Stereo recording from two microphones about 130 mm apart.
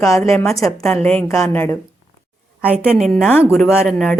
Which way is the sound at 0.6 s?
10° left (ahead or behind).